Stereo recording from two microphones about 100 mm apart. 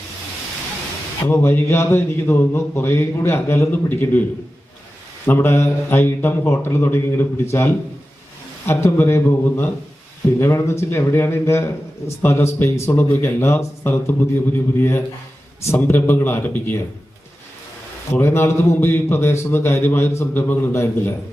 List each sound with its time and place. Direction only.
1.3 s a man's voice: 20° left (ahead or behind)
5.2 s a man's voice: 20° left (ahead or behind)
18.1 s a man's voice: 25° left (ahead or behind)